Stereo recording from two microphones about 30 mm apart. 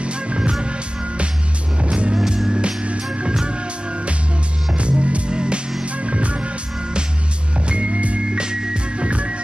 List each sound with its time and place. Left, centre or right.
0.0 s music: right
2.1 s music: centre
2.6 s music: right
5.3 s music: right
5.9 s music: right
8.3 s music: right